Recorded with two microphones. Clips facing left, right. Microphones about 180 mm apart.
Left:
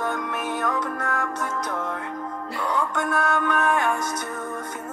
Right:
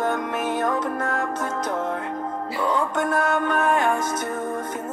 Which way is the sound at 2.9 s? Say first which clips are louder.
Right 2 dB; 20° right (ahead or behind).